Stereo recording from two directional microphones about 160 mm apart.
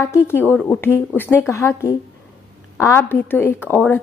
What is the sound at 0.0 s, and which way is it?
A woman's voice, 15° left (ahead or behind).